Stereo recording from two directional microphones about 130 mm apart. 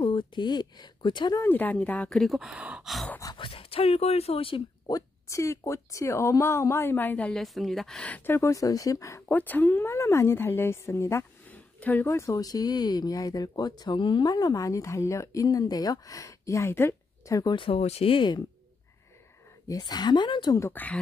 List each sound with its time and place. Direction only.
0.0 s speech: 35° left (ahead or behind)
1.4 s speech: 15° left (ahead or behind); by 3.1 s centre (ahead or behind)
3.3 s speech: 45° left (ahead or behind)
4.8 s speech: 25° left (ahead or behind)
17.6 s speech: 50° left (ahead or behind)
19.7 s speech: 30° left (ahead or behind)
20.5 s speech: 15° left (ahead or behind)